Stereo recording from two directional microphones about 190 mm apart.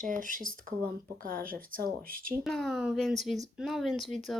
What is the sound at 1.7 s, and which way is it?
Speech, 50° right (ahead or behind).